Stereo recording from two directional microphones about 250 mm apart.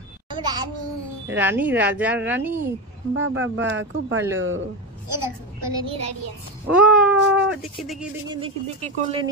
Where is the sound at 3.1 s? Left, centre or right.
Right.